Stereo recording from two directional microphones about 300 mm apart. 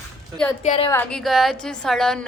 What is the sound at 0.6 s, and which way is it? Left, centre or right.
Speech, centre.